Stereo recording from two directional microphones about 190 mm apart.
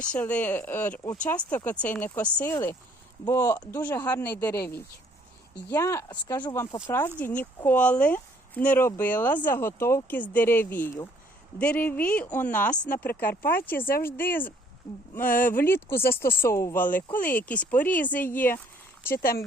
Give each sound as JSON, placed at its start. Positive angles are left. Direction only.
{"t": 0.0, "sound": "speech", "side_deg": 5}
{"t": 13.4, "sound": "speech", "side_deg": 50}
{"t": 13.7, "sound": "speech", "side_deg": 10}
{"t": 19.1, "sound": "speech", "side_deg": 50}